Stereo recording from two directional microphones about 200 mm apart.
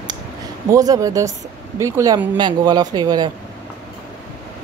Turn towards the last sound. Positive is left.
turn(degrees=-20)  # may be behind; listen again after turning